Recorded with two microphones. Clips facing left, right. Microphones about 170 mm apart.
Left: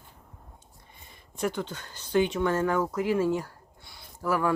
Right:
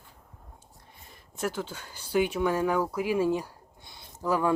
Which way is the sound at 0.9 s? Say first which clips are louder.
Even; centre (ahead or behind).